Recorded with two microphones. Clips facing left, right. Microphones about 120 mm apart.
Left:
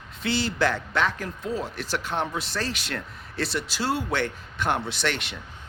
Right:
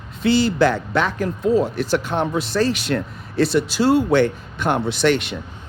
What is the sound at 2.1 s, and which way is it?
Speech, 50° right (ahead or behind).